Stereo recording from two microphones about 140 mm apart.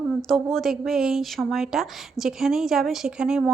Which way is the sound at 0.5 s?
Centre (ahead or behind).